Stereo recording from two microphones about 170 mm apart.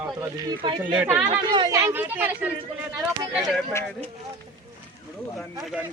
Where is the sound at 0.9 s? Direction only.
10° right (ahead or behind).